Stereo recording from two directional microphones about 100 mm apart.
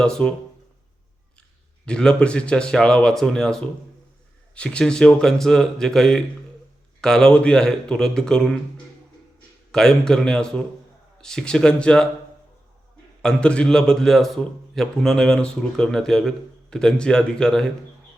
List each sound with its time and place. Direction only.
0.0 s speech: 10° left (ahead or behind)
1.8 s speech: 10° left (ahead or behind)
9.7 s speech: 5° left (ahead or behind)
13.2 s a man's voice: 10° left (ahead or behind)